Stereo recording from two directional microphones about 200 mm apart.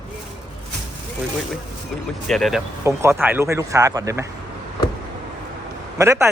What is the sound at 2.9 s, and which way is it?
Speech, 15° right (ahead or behind).